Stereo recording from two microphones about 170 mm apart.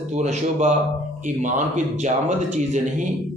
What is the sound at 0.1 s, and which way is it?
Speech, 45° right (ahead or behind).